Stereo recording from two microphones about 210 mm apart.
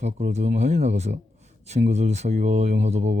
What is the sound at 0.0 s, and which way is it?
Speech, 35° right (ahead or behind).